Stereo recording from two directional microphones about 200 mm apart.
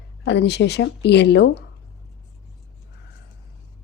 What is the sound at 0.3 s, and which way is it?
A woman's voice, 60° left (ahead or behind).